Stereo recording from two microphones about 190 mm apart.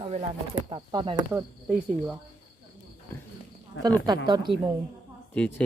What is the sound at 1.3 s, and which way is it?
Speech, 5° right (ahead or behind).